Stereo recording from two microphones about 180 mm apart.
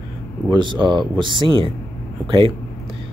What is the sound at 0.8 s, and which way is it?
Speech, 25° right (ahead or behind).